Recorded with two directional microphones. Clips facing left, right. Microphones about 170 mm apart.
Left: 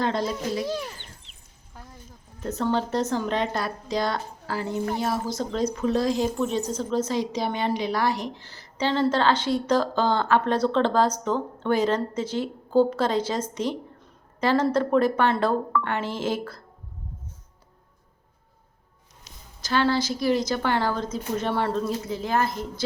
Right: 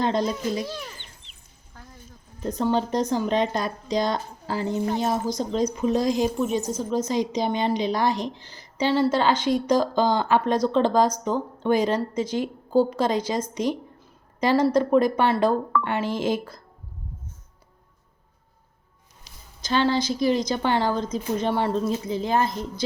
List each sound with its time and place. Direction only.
0.0 s a woman's voice: 20° right (ahead or behind)
2.4 s a woman's voice: 15° right (ahead or behind)
19.6 s a woman's voice: 20° right (ahead or behind)